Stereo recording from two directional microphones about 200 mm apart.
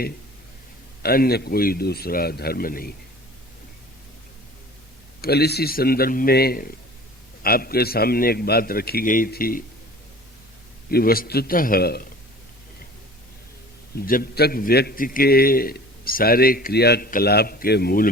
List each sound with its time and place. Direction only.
1.0 s a man's voice: 50° left (ahead or behind)
5.2 s a man's voice: 50° left (ahead or behind)
10.9 s a man's voice: 45° left (ahead or behind)
13.9 s a man's voice: 45° left (ahead or behind)